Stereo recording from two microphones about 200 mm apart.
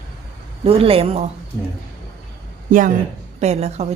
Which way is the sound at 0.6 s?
30° right (ahead or behind).